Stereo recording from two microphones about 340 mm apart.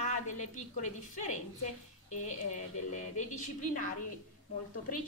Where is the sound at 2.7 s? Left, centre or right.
Left.